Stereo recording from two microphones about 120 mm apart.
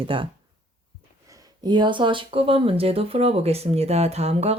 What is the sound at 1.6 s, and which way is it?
Speech, 40° right (ahead or behind).